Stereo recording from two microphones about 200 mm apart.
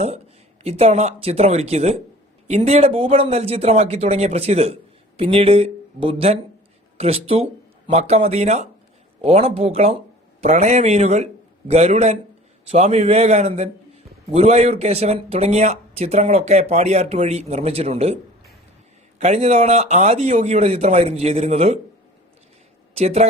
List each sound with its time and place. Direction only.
0.6 s speech: 30° right (ahead or behind)
19.2 s speech: 30° right (ahead or behind)
23.0 s speech: 30° right (ahead or behind)